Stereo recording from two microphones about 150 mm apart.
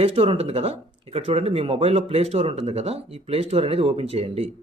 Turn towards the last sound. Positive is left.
turn(degrees=-45)  # may be behind; listen again after turning